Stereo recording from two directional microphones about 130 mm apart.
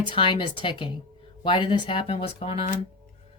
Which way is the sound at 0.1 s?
40° left (ahead or behind).